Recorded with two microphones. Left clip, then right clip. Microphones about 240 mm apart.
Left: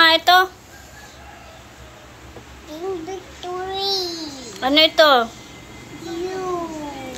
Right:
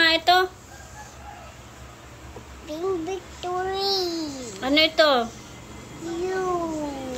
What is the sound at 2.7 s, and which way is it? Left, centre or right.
Speech, right.